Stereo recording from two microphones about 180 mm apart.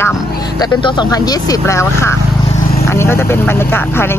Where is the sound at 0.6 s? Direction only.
25° left (ahead or behind).